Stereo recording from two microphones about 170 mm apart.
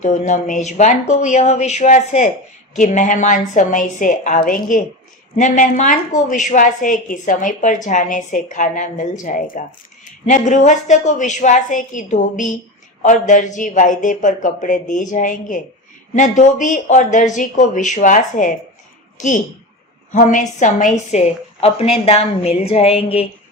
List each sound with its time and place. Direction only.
0.0 s a woman's voice: 45° left (ahead or behind)